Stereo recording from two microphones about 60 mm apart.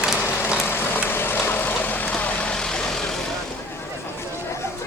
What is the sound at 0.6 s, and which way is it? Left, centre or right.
Vehicle, left.